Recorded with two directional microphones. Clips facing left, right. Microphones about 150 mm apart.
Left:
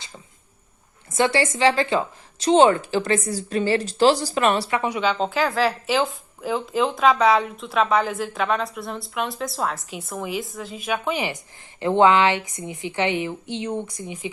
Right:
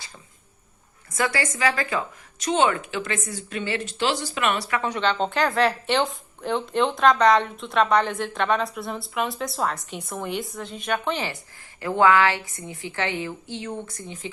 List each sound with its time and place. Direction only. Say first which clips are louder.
1.1 s speech: left 5 dB; 25° left (ahead or behind)
4.8 s speech: left 1 dB; 10° left (ahead or behind)
11.8 s a woman's voice: left 2 dB; 25° left (ahead or behind)